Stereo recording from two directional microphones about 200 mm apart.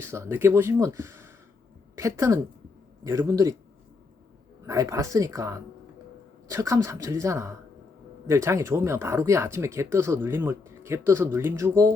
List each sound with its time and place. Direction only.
0.0 s speech: 10° right (ahead or behind)
4.6 s speech: 15° right (ahead or behind)